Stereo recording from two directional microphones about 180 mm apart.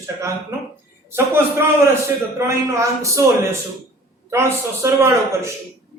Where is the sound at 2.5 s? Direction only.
15° right (ahead or behind).